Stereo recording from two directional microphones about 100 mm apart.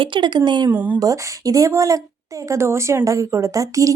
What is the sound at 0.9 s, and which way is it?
Speech, 35° right (ahead or behind).